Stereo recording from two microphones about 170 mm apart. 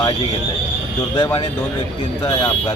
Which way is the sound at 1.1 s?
25° left (ahead or behind).